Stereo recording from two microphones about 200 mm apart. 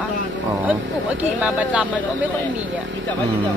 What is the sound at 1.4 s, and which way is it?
Speech, 5° right (ahead or behind).